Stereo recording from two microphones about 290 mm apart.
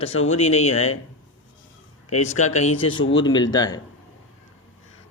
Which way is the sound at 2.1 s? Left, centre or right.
Left.